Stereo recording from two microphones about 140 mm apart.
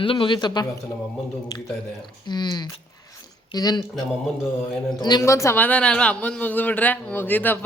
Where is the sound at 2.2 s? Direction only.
30° left (ahead or behind).